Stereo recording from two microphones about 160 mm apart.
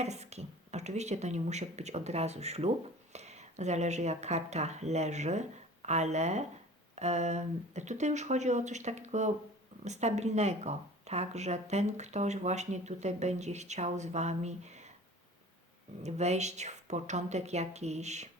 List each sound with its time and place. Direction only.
0.0 s speech: 45° right (ahead or behind)
16.0 s speech: 45° right (ahead or behind)